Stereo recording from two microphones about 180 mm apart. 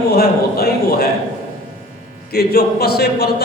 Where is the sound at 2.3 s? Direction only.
60° left (ahead or behind).